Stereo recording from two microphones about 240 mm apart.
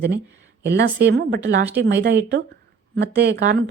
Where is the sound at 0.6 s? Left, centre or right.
Right.